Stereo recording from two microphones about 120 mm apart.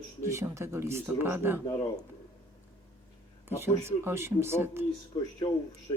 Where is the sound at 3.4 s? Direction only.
20° right (ahead or behind).